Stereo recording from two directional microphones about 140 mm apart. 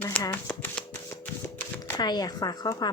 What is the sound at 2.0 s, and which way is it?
Speech, 30° left (ahead or behind).